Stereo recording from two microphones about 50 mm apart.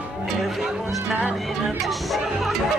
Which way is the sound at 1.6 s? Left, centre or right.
Centre.